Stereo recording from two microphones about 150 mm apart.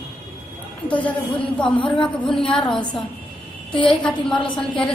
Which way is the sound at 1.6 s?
35° left (ahead or behind).